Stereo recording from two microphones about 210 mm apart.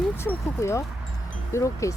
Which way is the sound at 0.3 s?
15° left (ahead or behind).